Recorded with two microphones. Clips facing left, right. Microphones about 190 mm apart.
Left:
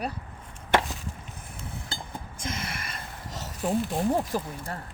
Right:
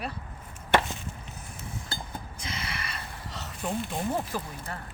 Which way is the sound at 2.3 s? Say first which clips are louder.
Left 4 dB; 50° left (ahead or behind).